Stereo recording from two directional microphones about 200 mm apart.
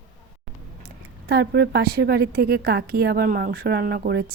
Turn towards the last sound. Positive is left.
turn(degrees=-50)  # may be behind; listen again after turning